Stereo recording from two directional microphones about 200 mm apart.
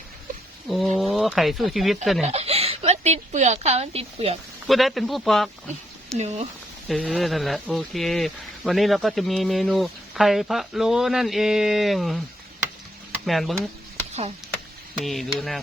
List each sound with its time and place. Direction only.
0.9 s speech: centre (ahead or behind)
2.2 s speech: 30° right (ahead or behind)
4.6 s speech: centre (ahead or behind)
6.1 s speech: 35° right (ahead or behind)
6.8 s speech: 5° left (ahead or behind)
13.2 s speech: centre (ahead or behind)
14.1 s speech: 30° right (ahead or behind)
14.9 s speech: centre (ahead or behind)